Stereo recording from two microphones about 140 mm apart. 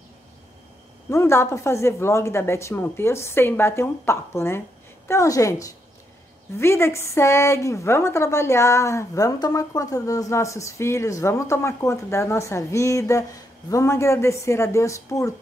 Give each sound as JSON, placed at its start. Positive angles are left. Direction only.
{"t": 1.1, "sound": "a woman's voice", "side_deg": 20}